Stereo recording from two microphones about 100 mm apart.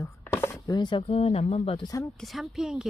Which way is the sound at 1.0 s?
85° left.